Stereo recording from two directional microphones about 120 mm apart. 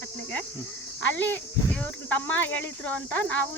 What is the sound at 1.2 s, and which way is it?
Speech, 15° left (ahead or behind).